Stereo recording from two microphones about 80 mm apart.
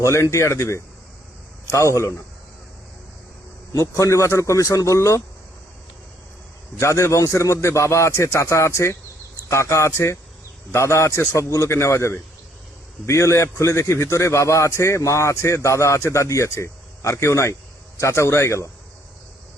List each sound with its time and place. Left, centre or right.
0.0 s a man's voice: left
3.7 s a man's voice: left
6.7 s a man's voice: left